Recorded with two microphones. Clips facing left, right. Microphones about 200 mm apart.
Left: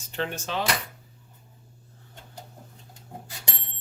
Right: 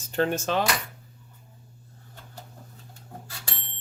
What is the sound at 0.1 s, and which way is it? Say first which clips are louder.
Speech: right 6 dB; 45° right (ahead or behind).